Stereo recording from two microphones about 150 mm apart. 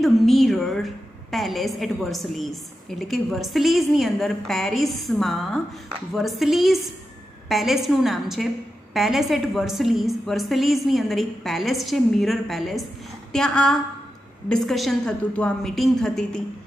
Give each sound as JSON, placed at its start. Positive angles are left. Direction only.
{"t": 0.0, "sound": "a woman's voice", "side_deg": 0}